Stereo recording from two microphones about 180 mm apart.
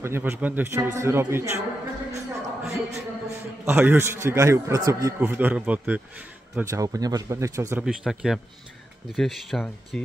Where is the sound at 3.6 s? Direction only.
10° right (ahead or behind).